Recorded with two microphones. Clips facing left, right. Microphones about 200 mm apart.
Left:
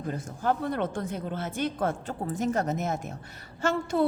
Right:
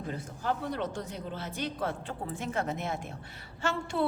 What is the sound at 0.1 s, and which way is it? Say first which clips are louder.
A woman's voice: left 5 dB; 50° left (ahead or behind).